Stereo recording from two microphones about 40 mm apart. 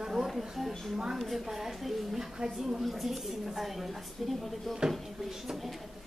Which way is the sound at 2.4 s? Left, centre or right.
Centre.